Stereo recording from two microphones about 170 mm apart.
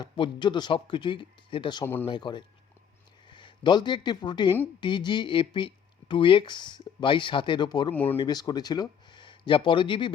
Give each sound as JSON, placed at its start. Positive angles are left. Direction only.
{"t": 0.0, "sound": "speech", "side_deg": 25}
{"t": 1.8, "sound": "speech", "side_deg": 10}
{"t": 2.0, "sound": "speech", "side_deg": 25}